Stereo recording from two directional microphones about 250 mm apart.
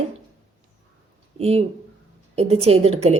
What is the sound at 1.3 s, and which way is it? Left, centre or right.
Speech, right.